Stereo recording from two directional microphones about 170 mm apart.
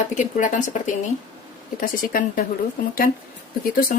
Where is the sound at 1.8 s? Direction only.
55° left (ahead or behind).